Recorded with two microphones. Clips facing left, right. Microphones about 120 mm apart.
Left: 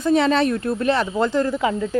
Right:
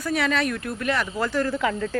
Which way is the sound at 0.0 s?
25° left (ahead or behind).